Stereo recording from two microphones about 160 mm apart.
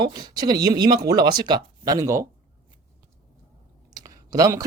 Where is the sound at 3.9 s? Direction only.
25° right (ahead or behind).